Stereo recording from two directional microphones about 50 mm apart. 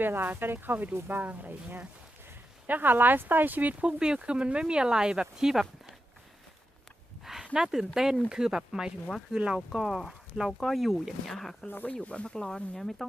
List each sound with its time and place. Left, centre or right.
0.0 s speech: right; by 5.9 s centre
7.5 s speech: centre
9.7 s speech: centre
12.0 s speech: left; by 13.1 s centre